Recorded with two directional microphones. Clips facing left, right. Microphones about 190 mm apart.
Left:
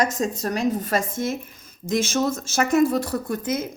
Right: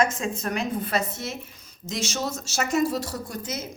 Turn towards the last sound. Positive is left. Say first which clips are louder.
# left 7 dB
turn(degrees=55)  # may be behind; listen again after turning